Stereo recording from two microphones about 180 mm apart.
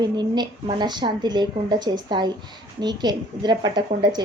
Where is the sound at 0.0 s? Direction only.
25° right (ahead or behind).